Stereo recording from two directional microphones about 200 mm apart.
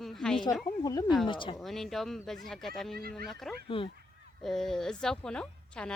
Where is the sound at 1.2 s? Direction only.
25° left (ahead or behind).